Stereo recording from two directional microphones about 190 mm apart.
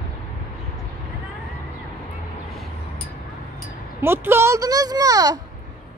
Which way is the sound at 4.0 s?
10° right (ahead or behind).